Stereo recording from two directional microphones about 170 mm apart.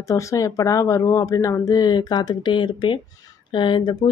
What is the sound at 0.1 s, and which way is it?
Speech, 20° left (ahead or behind).